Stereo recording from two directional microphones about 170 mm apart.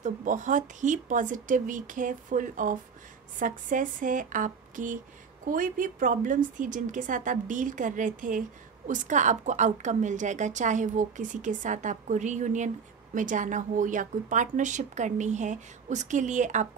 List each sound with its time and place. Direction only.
0.0 s a woman's voice: 50° right (ahead or behind)